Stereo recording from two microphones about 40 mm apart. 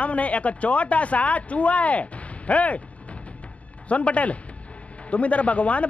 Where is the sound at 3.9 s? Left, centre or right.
Left.